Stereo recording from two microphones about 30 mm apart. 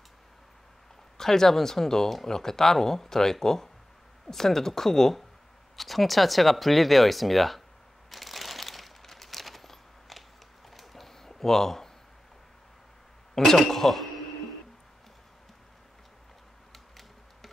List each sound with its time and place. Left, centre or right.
1.1 s speech: centre
5.8 s speech: centre
8.1 s a sound: centre
11.2 s speech: centre
13.4 s speech: centre
16.7 s a sound: centre